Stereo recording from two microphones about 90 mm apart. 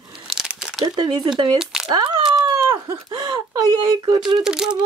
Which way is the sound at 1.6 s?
5° right (ahead or behind).